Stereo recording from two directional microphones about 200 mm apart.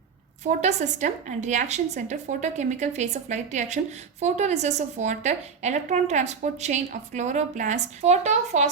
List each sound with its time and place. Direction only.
0.4 s a woman's voice: 35° right (ahead or behind)